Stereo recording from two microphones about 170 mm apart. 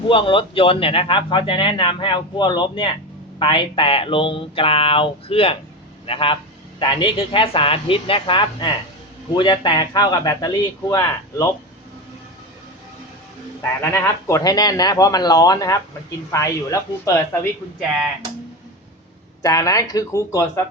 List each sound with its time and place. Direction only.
0.1 s speech: 30° left (ahead or behind)
13.6 s speech: 15° left (ahead or behind)
19.4 s speech: 20° left (ahead or behind)